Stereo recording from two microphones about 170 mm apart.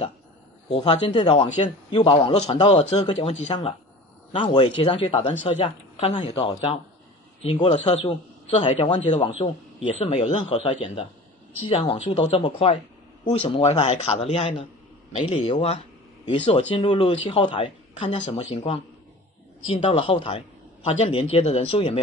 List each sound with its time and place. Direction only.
0.7 s a man's voice: 30° left (ahead or behind)